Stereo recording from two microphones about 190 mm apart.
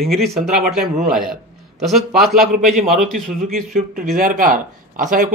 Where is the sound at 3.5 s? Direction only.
40° right (ahead or behind).